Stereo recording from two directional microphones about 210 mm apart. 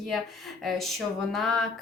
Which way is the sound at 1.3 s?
Centre (ahead or behind).